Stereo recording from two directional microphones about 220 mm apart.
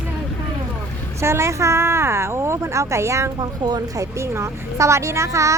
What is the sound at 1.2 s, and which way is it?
Speech, 10° right (ahead or behind).